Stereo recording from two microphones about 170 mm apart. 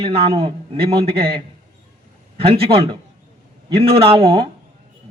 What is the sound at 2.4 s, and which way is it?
A man's voice, 35° right (ahead or behind).